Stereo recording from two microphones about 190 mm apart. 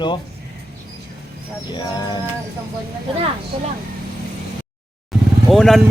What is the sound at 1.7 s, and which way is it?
Speech, 20° left (ahead or behind).